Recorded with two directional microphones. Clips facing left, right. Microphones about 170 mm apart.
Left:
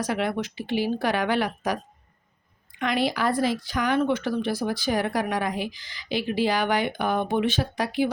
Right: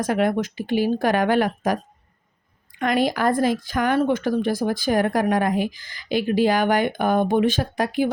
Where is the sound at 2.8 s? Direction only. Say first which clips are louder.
Right 4 dB; 45° right (ahead or behind).